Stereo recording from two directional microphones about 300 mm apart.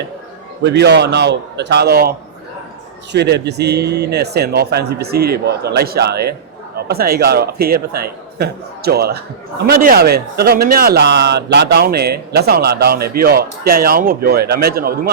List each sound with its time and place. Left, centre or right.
0.6 s a man's voice: right